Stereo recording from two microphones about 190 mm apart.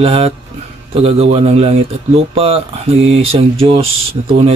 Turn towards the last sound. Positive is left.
turn(degrees=-30)  # may be behind; listen again after turning